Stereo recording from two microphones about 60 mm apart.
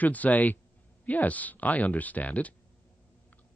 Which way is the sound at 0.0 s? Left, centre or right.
Left.